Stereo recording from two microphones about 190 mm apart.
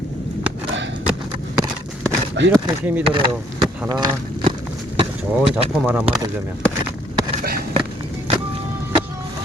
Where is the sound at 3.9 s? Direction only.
20° right (ahead or behind).